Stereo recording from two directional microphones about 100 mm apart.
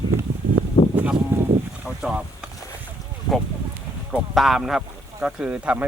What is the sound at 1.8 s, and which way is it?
Boat, 5° right (ahead or behind).